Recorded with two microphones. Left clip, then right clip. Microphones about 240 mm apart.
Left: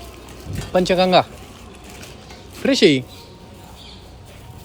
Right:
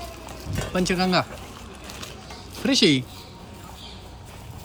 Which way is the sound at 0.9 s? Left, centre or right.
Right.